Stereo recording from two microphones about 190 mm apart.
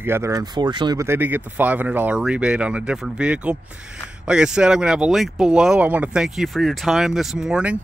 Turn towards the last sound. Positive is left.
turn(degrees=-5)  # may be behind; listen again after turning